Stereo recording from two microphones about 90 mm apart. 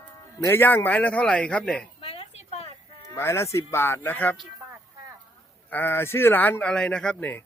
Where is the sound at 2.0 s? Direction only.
90° left.